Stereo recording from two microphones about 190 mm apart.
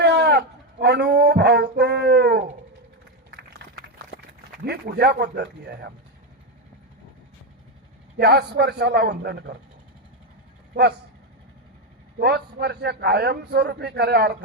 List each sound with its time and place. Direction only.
0.0 s a sound: 60° right (ahead or behind)
4.6 s a man's voice: 60° right (ahead or behind)
8.2 s a man's voice: 60° right (ahead or behind)
12.2 s a man's voice: 60° right (ahead or behind)